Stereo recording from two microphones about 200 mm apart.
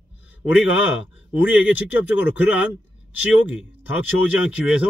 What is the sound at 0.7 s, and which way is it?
Speech, 75° left (ahead or behind).